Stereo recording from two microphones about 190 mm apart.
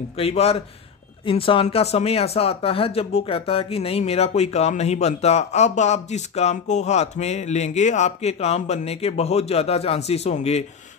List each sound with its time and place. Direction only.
0.2 s speech: 30° left (ahead or behind)